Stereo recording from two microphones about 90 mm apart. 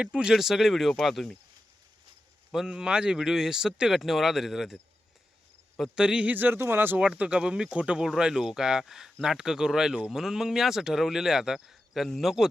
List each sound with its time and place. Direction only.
0.0 s speech: 10° right (ahead or behind)
2.5 s speech: 5° right (ahead or behind)
6.0 s speech: 10° right (ahead or behind)
7.0 s speech: 10° right (ahead or behind)